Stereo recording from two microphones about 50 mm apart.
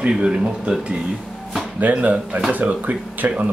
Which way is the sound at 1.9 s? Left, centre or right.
Right.